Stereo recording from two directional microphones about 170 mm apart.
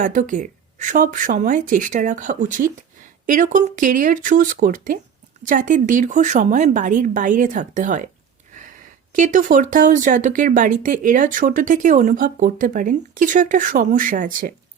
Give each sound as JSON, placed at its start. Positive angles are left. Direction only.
{"t": 0.0, "sound": "speech", "side_deg": -50}
{"t": 9.1, "sound": "speech", "side_deg": -50}